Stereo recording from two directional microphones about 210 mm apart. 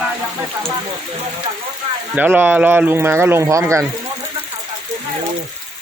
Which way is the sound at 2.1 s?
10° right (ahead or behind).